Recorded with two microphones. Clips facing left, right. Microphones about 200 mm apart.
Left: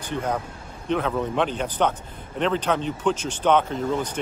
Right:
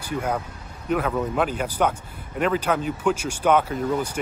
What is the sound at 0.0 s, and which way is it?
Speech, 10° right (ahead or behind).